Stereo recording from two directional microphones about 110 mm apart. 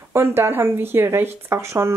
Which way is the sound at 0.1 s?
20° right (ahead or behind).